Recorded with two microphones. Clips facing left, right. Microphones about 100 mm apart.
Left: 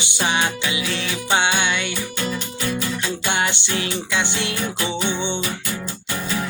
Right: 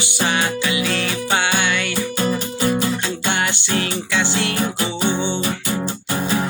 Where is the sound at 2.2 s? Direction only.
40° right (ahead or behind).